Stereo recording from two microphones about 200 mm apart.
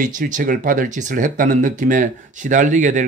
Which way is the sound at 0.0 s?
40° right (ahead or behind).